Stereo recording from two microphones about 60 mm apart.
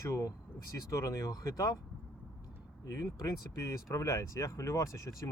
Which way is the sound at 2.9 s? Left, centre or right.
Left.